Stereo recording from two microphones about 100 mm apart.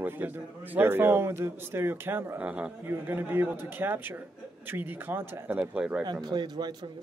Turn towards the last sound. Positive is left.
turn(degrees=-45)  # may be behind; listen again after turning